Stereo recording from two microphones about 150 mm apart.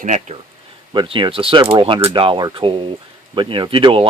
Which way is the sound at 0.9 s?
30° right (ahead or behind).